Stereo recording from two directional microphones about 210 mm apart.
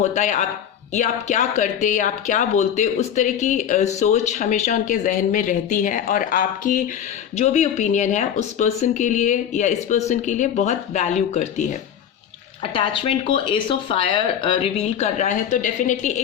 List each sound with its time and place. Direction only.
0.0 s speech: 35° left (ahead or behind)
12.7 s speech: 25° left (ahead or behind)